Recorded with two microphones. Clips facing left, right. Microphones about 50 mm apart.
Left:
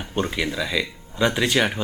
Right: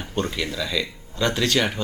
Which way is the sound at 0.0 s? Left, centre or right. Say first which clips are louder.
Left 2 dB; centre.